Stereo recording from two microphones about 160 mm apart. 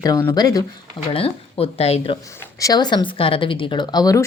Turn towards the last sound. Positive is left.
turn(degrees=25)  # may be behind; listen again after turning